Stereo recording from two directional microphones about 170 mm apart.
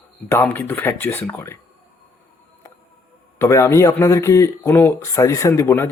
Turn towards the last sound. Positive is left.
turn(degrees=15)  # may be behind; listen again after turning